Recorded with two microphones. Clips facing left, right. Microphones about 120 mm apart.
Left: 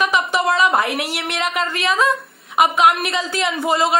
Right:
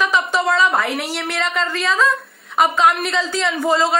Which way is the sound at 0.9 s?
60° left (ahead or behind).